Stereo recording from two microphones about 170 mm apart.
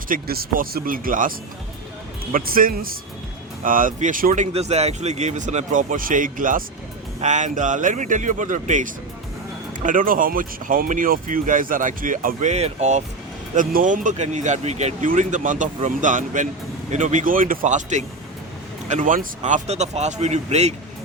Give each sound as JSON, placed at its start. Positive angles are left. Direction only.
{"t": 0.1, "sound": "speech", "side_deg": -60}
{"t": 2.3, "sound": "speech", "side_deg": -55}
{"t": 4.5, "sound": "speech", "side_deg": -40}